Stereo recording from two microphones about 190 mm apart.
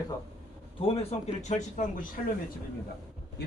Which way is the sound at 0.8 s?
35° left (ahead or behind).